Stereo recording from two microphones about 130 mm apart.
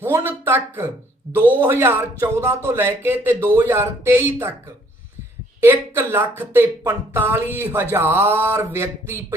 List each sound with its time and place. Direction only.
0.0 s speech: 20° right (ahead or behind)
5.5 s speech: 15° right (ahead or behind)